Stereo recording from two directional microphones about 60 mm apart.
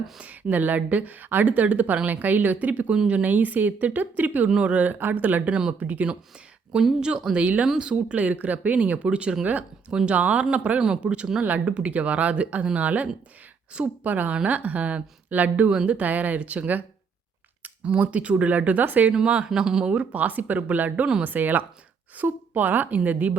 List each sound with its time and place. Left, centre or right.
0.2 s speech: right
4.4 s speech: centre
5.5 s speech: centre
5.8 s speech: right
6.7 s speech: centre; by 19.1 s right
19.1 s speech: centre
19.9 s speech: right